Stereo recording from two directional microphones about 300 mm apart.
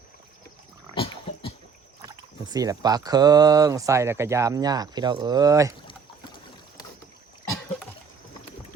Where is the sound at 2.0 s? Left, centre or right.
Centre.